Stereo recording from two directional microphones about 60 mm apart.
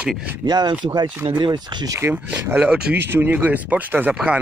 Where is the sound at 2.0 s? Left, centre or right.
Right.